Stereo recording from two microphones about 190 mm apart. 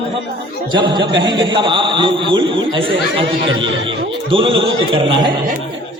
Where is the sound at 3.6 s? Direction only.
80° right.